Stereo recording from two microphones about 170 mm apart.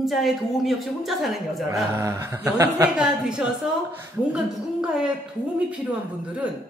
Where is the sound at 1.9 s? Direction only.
15° right (ahead or behind).